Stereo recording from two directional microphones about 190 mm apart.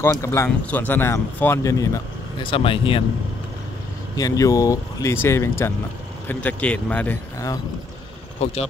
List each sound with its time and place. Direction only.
0.0 s speech: 15° left (ahead or behind)
2.4 s speech: 30° left (ahead or behind)
4.2 s speech: 15° left (ahead or behind)
8.4 s speech: 35° left (ahead or behind)